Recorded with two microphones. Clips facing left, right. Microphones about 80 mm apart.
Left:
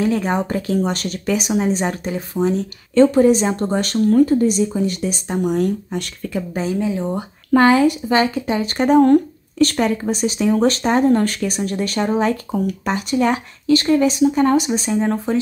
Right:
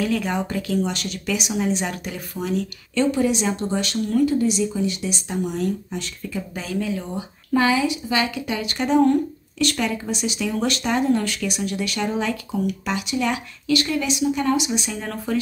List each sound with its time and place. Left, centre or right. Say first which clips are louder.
0.0 s speech: left 4 dB; left
6.5 s speech: left 5 dB; left
7.2 s speech: left 6 dB; left